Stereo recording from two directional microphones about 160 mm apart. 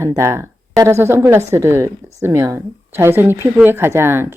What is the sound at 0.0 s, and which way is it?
Speech, 15° right (ahead or behind).